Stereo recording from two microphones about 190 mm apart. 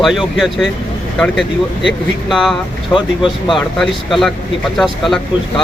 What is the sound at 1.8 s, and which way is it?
Speech, centre (ahead or behind).